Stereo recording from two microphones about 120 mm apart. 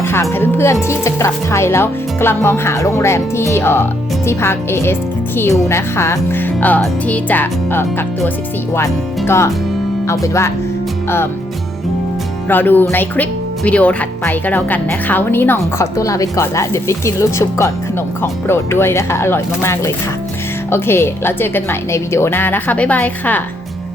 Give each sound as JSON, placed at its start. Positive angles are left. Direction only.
{"t": 0.0, "sound": "speech", "side_deg": 20}
{"t": 12.5, "sound": "a woman's voice", "side_deg": 15}